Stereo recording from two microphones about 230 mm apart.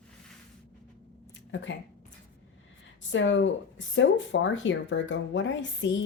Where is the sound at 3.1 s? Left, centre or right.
Left.